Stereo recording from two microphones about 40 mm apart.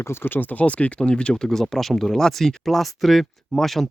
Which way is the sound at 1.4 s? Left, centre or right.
Centre.